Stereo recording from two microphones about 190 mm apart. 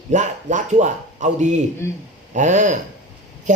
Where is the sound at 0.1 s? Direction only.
40° right (ahead or behind).